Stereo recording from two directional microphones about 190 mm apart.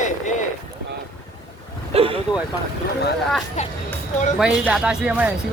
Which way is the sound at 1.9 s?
30° right (ahead or behind).